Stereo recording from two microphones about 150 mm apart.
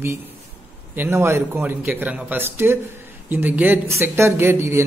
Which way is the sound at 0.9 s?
15° right (ahead or behind).